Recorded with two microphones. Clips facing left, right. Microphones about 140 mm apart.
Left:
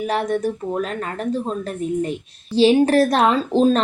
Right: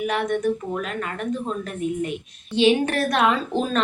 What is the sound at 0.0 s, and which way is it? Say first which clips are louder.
A woman's voice: left 2 dB; 35° left (ahead or behind).